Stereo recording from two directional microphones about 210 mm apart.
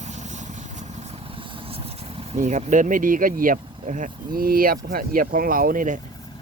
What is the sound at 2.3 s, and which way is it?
Speech, 35° right (ahead or behind).